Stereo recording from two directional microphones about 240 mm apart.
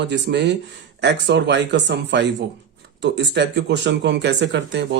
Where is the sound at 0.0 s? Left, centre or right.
Right.